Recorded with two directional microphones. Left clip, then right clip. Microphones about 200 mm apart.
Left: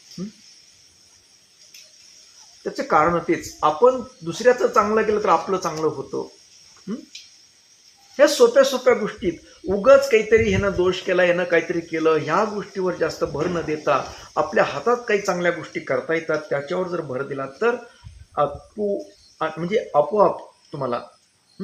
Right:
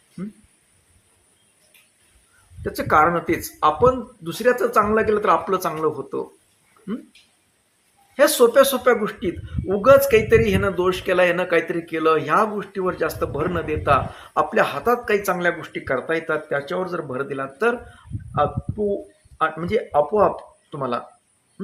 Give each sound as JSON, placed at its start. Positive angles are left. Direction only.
{"t": 2.6, "sound": "speech", "side_deg": -5}
{"t": 8.1, "sound": "speech", "side_deg": -5}
{"t": 19.4, "sound": "speech", "side_deg": -5}